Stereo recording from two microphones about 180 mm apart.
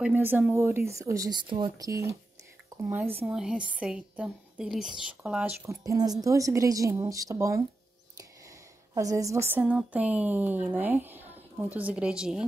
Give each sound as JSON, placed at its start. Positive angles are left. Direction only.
{"t": 0.0, "sound": "a woman's voice", "side_deg": -10}
{"t": 5.9, "sound": "a woman's voice", "side_deg": -20}
{"t": 8.9, "sound": "a woman's voice", "side_deg": -15}